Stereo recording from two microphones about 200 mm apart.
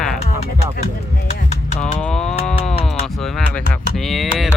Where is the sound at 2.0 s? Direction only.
5° left (ahead or behind).